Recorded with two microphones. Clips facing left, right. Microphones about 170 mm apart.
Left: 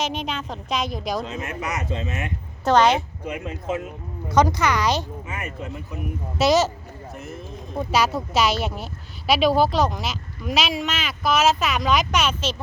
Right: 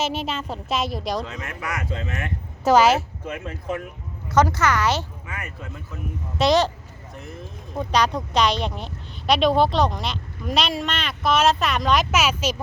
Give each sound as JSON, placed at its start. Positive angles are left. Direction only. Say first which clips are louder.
{"t": 0.0, "sound": "speech", "louder": "right 1 dB", "side_deg": -5}
{"t": 1.2, "sound": "speech", "louder": "left 3 dB", "side_deg": 20}
{"t": 2.6, "sound": "a woman's voice", "louder": "right 1 dB", "side_deg": -5}
{"t": 3.2, "sound": "speech", "louder": "left 1 dB", "side_deg": 15}
{"t": 6.4, "sound": "speech", "louder": "even", "side_deg": 5}
{"t": 7.8, "sound": "speech", "louder": "even", "side_deg": 5}